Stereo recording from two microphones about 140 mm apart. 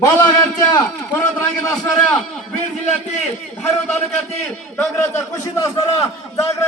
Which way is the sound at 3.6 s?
10° left (ahead or behind).